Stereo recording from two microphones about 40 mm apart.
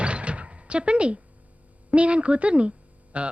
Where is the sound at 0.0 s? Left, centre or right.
Right.